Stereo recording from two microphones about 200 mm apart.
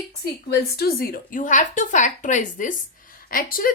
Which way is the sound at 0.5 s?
50° left (ahead or behind).